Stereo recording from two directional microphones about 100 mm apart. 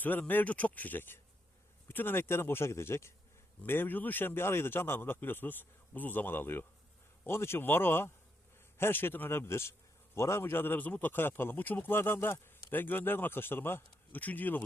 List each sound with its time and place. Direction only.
0.0 s speech: 20° left (ahead or behind)